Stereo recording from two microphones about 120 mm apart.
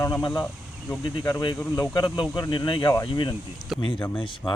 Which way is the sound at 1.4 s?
35° left (ahead or behind).